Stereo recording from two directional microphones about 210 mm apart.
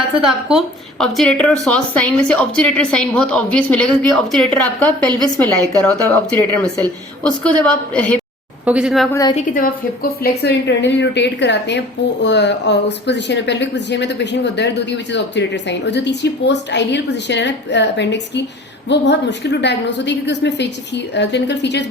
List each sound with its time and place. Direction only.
0.3 s a woman's voice: centre (ahead or behind)
8.6 s a woman's voice: 5° right (ahead or behind)
9.3 s speech: 40° left (ahead or behind)